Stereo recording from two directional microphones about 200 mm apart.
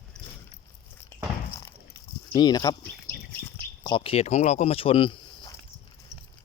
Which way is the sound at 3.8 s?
25° left (ahead or behind).